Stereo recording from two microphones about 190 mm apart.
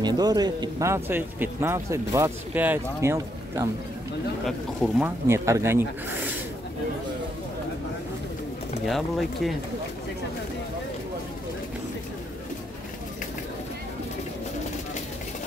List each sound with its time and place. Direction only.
0.0 s speech: 20° right (ahead or behind)
4.5 s speech: centre (ahead or behind)
8.8 s speech: centre (ahead or behind)